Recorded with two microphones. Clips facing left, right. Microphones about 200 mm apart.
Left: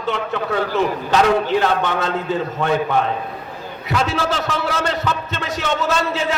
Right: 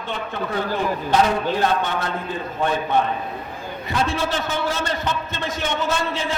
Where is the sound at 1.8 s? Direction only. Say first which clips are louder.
Left 5 dB; 90° left.